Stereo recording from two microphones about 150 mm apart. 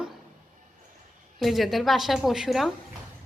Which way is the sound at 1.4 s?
Centre (ahead or behind).